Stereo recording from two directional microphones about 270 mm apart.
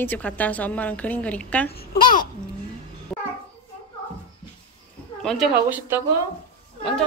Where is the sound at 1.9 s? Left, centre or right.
Left.